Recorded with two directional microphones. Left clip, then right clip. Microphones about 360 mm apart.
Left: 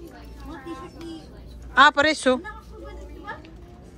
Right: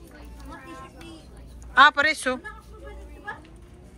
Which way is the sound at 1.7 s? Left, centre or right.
Centre.